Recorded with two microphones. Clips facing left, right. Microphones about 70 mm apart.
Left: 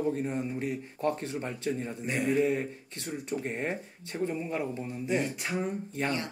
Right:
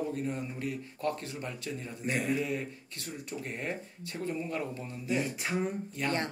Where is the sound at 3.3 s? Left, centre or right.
Left.